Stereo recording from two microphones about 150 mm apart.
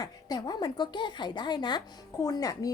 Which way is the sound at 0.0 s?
25° left (ahead or behind).